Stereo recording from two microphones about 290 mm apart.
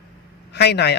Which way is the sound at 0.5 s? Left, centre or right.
Left.